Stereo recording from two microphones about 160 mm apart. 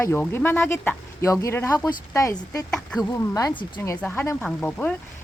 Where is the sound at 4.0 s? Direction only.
10° left (ahead or behind).